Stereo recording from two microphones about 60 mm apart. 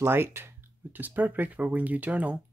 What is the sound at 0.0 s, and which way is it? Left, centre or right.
Speech, right.